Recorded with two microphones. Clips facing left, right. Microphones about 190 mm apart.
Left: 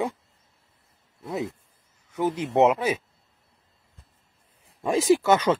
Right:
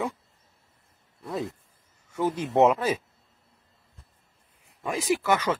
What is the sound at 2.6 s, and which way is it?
Speech, 10° left (ahead or behind).